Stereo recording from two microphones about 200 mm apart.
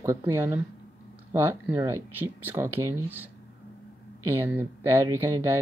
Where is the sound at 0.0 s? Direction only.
15° right (ahead or behind).